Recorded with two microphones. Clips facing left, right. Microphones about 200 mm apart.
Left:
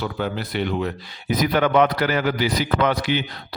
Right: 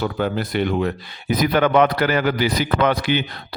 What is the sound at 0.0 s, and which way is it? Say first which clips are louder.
A man's voice: right 4 dB; 50° right (ahead or behind).